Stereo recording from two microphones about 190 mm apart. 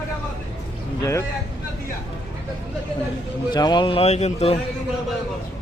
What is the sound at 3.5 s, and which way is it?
Speech, 25° left (ahead or behind).